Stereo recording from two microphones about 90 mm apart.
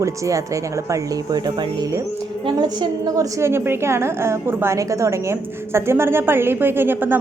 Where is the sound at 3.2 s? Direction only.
30° right (ahead or behind).